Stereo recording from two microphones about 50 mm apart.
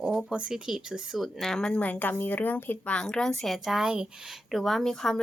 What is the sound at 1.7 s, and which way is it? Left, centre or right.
Speech, left.